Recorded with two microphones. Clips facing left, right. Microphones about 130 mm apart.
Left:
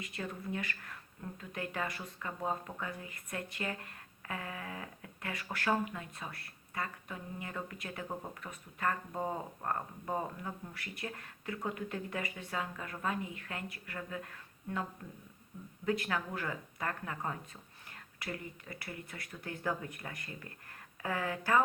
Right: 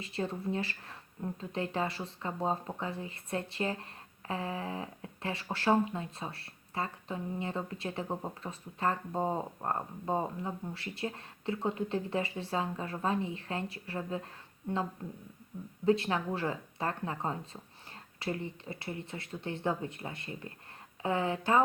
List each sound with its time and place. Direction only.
0.0 s speech: 30° right (ahead or behind)
15.9 s speech: 25° right (ahead or behind)